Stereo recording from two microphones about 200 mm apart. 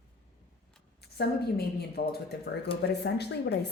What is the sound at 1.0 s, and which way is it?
A woman's voice, 55° left (ahead or behind).